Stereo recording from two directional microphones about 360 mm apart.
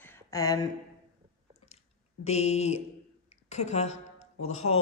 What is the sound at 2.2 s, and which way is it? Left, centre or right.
A man's voice, centre.